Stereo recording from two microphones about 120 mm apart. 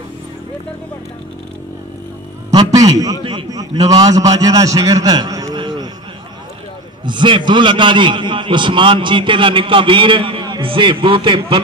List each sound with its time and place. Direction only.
2.7 s a man's voice: 30° right (ahead or behind)
5.6 s a sound: 40° right (ahead or behind)
7.1 s a man's voice: 40° right (ahead or behind)